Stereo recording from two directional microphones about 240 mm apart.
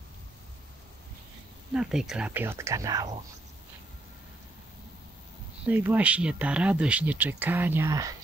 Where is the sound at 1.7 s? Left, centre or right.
Centre.